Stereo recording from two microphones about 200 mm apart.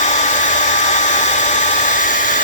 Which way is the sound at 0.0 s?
35° left (ahead or behind).